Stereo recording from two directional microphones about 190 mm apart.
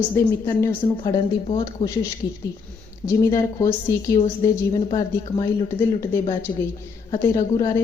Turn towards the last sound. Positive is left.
turn(degrees=20)  # may be behind; listen again after turning